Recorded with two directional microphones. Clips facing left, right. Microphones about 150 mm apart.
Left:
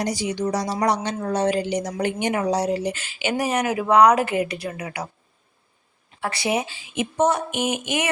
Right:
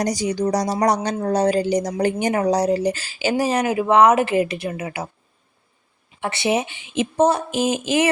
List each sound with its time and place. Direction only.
0.0 s speech: 40° right (ahead or behind); by 5.0 s 25° right (ahead or behind)
6.1 s speech: 25° right (ahead or behind)